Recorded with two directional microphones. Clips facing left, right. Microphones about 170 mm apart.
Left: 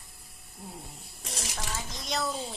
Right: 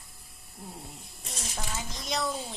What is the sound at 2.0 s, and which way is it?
Speech, centre (ahead or behind).